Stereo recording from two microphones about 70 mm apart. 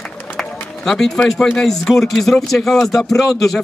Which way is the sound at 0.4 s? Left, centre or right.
Centre.